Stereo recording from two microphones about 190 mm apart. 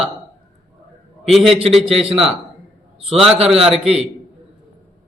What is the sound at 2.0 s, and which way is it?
Speech, 30° right (ahead or behind).